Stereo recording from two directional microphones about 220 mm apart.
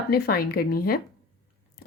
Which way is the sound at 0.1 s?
45° left (ahead or behind).